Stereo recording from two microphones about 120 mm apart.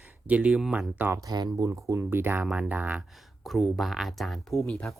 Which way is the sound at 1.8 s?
20° right (ahead or behind).